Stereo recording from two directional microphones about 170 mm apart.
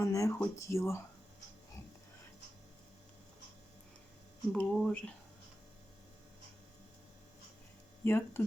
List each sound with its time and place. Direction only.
0.0 s speech: 20° left (ahead or behind)
4.5 s speech: 5° left (ahead or behind)
8.0 s speech: 15° left (ahead or behind)